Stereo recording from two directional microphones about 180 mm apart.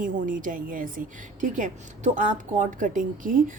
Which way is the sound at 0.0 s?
45° right (ahead or behind).